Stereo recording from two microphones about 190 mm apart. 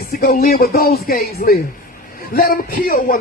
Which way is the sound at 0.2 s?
50° left (ahead or behind).